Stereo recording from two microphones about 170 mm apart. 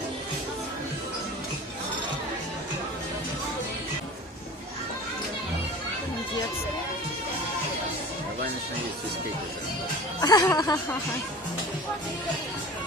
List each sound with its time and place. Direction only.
10.2 s speech: 20° left (ahead or behind)